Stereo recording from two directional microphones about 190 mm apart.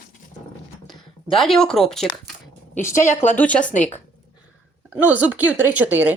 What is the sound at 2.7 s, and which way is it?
Speech, 40° left (ahead or behind).